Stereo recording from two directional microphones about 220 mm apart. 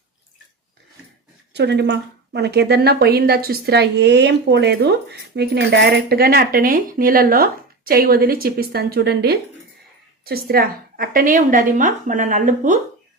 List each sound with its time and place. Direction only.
1.5 s a woman's voice: 50° right (ahead or behind); by 12.8 s 35° right (ahead or behind)